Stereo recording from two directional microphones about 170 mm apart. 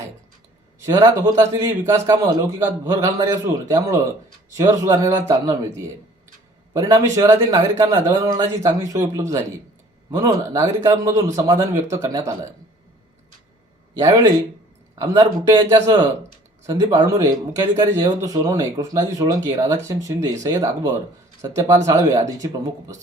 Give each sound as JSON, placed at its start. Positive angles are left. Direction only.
{"t": 0.8, "sound": "a man's voice", "side_deg": -15}
{"t": 14.0, "sound": "a man's voice", "side_deg": -20}